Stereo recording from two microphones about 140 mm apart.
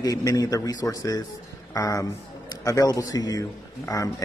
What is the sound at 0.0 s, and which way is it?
A man's voice, 25° left (ahead or behind).